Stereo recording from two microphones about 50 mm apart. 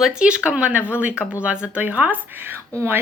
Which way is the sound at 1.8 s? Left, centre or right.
Right.